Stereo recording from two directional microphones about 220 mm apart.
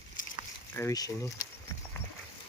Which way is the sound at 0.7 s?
15° left (ahead or behind).